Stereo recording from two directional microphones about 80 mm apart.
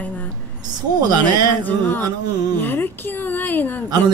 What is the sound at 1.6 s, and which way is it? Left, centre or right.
A woman's voice, left.